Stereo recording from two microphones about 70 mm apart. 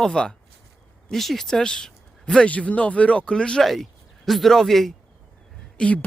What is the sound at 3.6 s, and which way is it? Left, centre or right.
Speech, centre.